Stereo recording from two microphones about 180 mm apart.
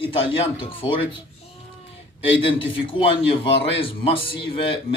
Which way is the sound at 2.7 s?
30° left (ahead or behind).